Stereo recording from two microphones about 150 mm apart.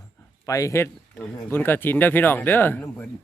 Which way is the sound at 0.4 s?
20° left (ahead or behind).